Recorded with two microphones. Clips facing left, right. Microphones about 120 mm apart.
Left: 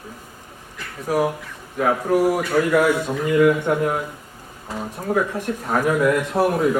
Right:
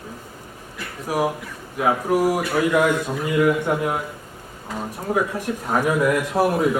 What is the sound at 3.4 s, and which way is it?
Speech, 5° right (ahead or behind).